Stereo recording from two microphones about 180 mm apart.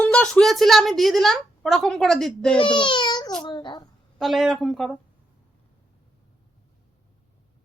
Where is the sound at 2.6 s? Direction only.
25° left (ahead or behind).